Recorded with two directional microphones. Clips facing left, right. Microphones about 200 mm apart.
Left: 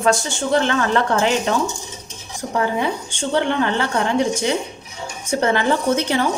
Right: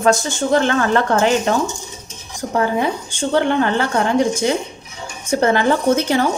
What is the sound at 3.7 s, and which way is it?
Speech, 45° right (ahead or behind).